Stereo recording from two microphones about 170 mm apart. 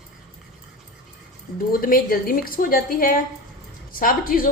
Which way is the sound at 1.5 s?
55° left (ahead or behind).